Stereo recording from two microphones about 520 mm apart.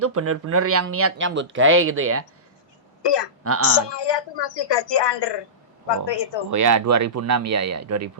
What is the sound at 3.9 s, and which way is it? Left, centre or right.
Speech, left.